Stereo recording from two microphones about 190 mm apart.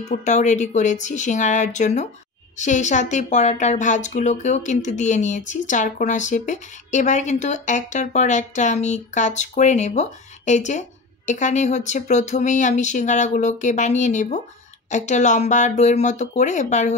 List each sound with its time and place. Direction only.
0.2 s a woman's voice: 40° left (ahead or behind)